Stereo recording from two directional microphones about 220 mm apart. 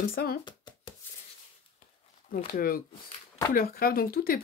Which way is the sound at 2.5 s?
40° left (ahead or behind).